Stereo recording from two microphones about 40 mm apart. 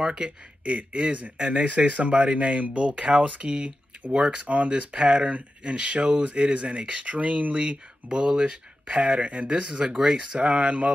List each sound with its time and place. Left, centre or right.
0.0 s speech: right
4.6 s speech: right
8.1 s speech: right
8.8 s speech: right
9.5 s speech: right